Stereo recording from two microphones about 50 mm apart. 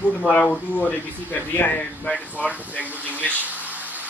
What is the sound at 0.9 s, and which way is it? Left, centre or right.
Speech, left.